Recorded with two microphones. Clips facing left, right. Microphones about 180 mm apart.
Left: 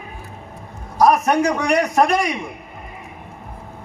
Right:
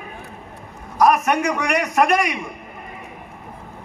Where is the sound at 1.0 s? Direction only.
35° left (ahead or behind).